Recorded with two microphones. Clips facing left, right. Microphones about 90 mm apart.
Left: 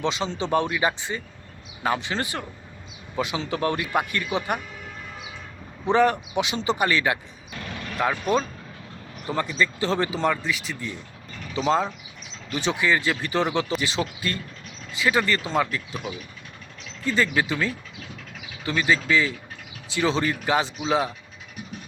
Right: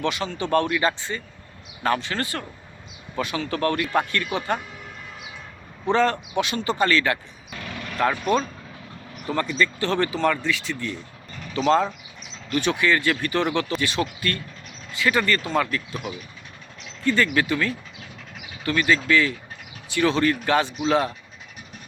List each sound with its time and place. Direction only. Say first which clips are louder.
0.0 s speech: even; 20° left (ahead or behind)
5.9 s speech: left 1 dB; 15° left (ahead or behind)
7.9 s speech: right 2 dB; 5° left (ahead or behind)
9.2 s speech: right 1 dB; 15° left (ahead or behind)
12.5 s speech: right 2 dB; 20° left (ahead or behind)
17.1 s speech: right 2 dB; 20° left (ahead or behind)